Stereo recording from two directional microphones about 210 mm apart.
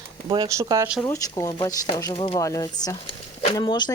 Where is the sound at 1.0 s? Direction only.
15° left (ahead or behind).